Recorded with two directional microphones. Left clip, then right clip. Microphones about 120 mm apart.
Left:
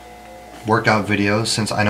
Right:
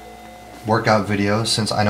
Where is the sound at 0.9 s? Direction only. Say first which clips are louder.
Even; 5° right (ahead or behind).